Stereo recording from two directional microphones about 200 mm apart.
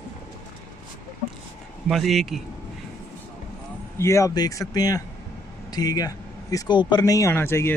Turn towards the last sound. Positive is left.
turn(degrees=10)  # may be behind; listen again after turning